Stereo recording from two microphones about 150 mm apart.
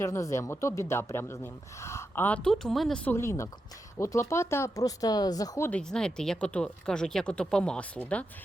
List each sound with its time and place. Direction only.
0.0 s a woman's voice: 20° left (ahead or behind)
5.9 s speech: 5° left (ahead or behind)